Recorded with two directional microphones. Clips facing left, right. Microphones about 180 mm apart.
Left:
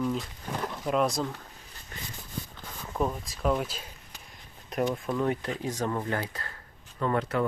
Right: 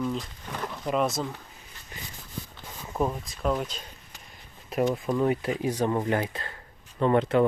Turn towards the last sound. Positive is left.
turn(degrees=-25)  # may be behind; listen again after turning